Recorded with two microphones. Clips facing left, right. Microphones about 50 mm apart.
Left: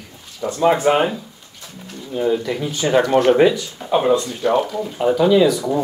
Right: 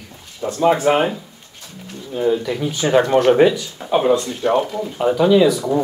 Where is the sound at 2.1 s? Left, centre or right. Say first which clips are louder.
Right 1 dB; centre.